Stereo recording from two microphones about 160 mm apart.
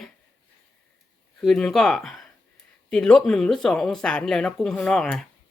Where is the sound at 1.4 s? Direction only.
5° left (ahead or behind).